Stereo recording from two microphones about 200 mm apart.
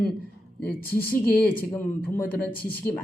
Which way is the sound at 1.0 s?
45° left (ahead or behind).